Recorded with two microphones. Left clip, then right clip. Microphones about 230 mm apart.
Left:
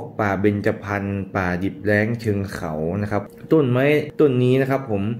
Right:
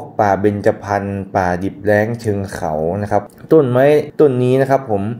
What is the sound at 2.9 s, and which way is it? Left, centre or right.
Speech, centre.